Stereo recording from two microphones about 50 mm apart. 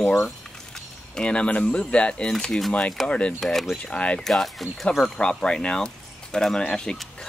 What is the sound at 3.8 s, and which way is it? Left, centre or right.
Speech, left.